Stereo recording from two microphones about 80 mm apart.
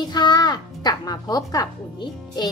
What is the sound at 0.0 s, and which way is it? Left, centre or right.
Music, left.